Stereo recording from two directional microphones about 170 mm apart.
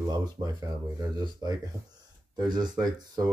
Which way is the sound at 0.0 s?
25° right (ahead or behind).